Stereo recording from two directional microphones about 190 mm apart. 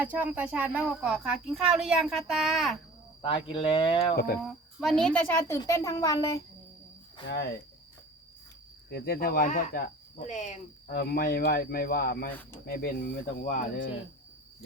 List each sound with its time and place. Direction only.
0.0 s a woman's voice: 10° right (ahead or behind)
3.2 s speech: 30° left (ahead or behind)
4.1 s speech: 50° left (ahead or behind)
4.4 s a child's voice: centre (ahead or behind); by 6.4 s 20° left (ahead or behind)
8.9 s speech: 55° left (ahead or behind)